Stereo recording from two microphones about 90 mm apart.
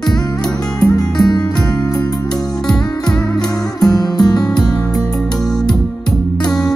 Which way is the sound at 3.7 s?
45° left (ahead or behind).